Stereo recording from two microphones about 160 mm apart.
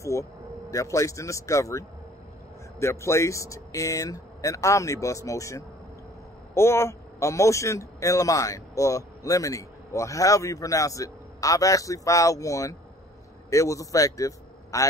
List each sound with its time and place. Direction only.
0.0 s a man's voice: 20° left (ahead or behind)